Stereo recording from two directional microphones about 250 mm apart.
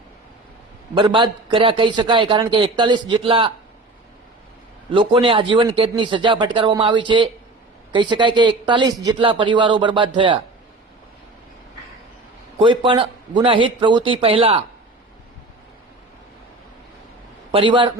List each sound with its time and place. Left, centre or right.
0.9 s a man's voice: centre
4.9 s a man's voice: centre
12.5 s a man's voice: centre
17.5 s a man's voice: right